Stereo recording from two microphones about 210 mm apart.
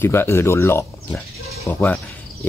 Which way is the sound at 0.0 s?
10° left (ahead or behind).